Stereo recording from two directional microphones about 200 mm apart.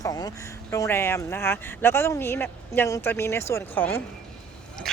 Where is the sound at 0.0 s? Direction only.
20° left (ahead or behind).